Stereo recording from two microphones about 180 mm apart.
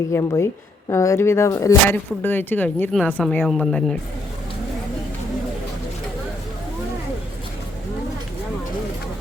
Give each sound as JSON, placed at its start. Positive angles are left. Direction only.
{"t": 0.1, "sound": "a woman's voice", "side_deg": 15}